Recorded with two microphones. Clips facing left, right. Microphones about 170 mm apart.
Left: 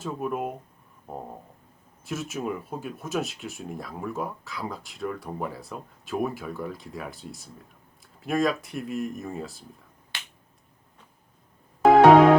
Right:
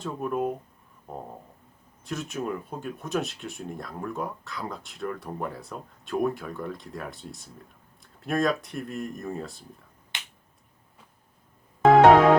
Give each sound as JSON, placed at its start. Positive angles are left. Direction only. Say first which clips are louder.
{"t": 0.0, "sound": "speech", "louder": "right 1 dB", "side_deg": 5}
{"t": 2.0, "sound": "speech", "louder": "even", "side_deg": 5}
{"t": 10.1, "sound": "finger snapping", "louder": "even", "side_deg": -20}
{"t": 11.8, "sound": "music", "louder": "even", "side_deg": 0}